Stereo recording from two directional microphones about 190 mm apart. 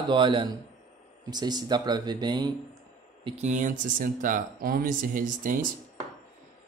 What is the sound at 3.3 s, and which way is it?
Speech, 40° right (ahead or behind).